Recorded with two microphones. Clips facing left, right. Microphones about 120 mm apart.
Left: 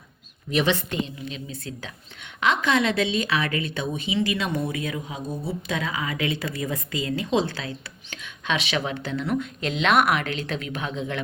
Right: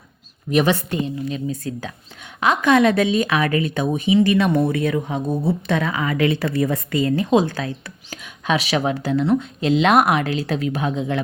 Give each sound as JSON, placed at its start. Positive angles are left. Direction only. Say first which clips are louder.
{"t": 0.5, "sound": "speech", "louder": "right 5 dB", "side_deg": -45}